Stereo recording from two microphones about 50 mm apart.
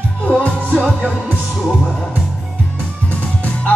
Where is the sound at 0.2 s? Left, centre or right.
Left.